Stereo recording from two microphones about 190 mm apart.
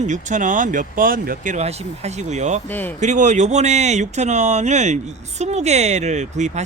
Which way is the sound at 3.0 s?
40° right (ahead or behind).